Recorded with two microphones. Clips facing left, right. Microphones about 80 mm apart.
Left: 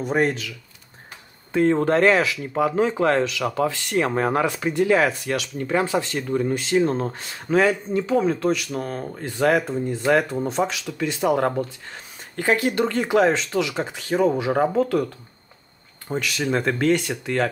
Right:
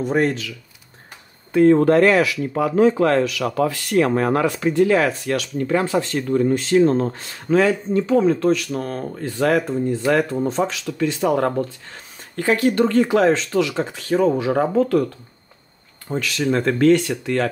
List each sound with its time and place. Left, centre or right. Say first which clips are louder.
0.0 s speech: right 2 dB; centre
1.5 s speech: right 5 dB; left
8.0 s speech: right 4 dB; centre
16.1 s speech: right 3 dB; centre